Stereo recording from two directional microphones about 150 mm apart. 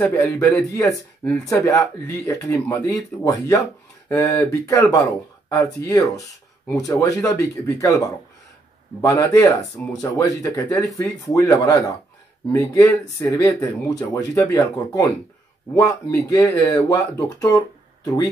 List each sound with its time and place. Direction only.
0.0 s a man's voice: 10° left (ahead or behind)
9.0 s speech: 20° left (ahead or behind)